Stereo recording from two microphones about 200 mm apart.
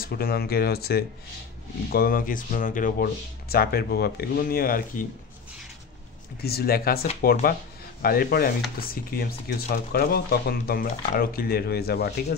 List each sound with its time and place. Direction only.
0.0 s speech: 50° left (ahead or behind)
6.4 s speech: 50° left (ahead or behind)